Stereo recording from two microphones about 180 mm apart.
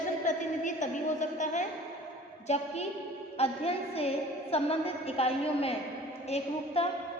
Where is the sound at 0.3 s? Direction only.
45° left (ahead or behind).